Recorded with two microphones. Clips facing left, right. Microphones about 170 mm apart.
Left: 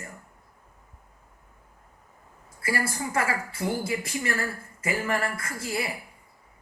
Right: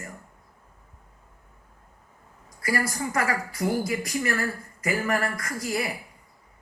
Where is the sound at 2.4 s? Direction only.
30° left (ahead or behind).